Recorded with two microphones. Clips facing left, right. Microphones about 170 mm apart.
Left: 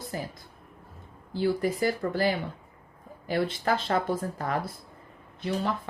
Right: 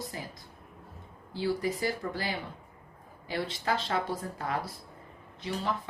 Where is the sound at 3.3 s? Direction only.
55° left (ahead or behind).